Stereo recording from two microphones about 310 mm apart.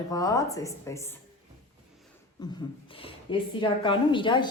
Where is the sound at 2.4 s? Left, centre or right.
Centre.